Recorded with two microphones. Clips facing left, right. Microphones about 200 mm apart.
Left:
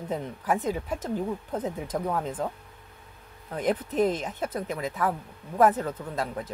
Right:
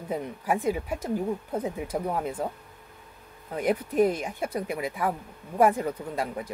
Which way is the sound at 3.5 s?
10° right (ahead or behind).